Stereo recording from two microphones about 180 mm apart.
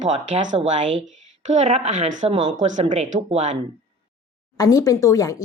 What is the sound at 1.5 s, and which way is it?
A woman's voice, 40° right (ahead or behind).